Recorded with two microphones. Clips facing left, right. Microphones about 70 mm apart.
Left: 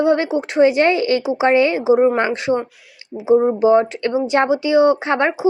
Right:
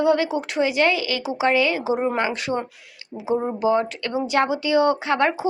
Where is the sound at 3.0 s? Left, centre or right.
Left.